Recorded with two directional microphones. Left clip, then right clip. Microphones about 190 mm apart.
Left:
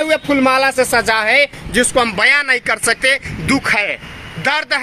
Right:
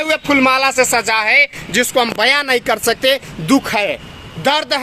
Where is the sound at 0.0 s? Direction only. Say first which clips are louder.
Even; 20° right (ahead or behind).